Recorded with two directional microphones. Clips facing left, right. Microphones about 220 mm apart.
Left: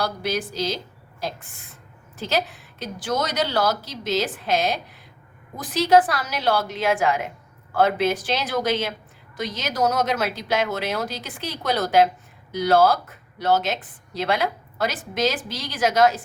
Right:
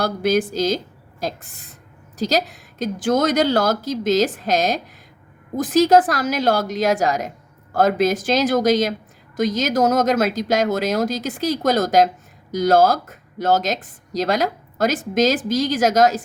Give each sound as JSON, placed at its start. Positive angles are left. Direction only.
{"t": 0.0, "sound": "a woman's voice", "side_deg": -50}
{"t": 2.1, "sound": "a woman's voice", "side_deg": -40}